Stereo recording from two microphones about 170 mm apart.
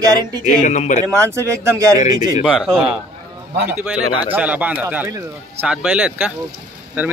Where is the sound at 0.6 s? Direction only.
45° left (ahead or behind).